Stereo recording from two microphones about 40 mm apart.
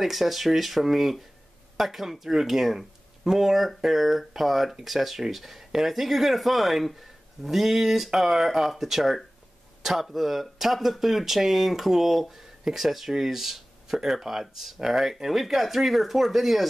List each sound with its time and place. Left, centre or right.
0.0 s speech: centre